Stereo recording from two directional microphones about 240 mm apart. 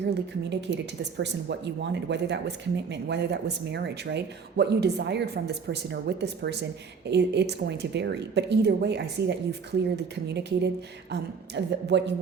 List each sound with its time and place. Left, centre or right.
0.1 s speech: right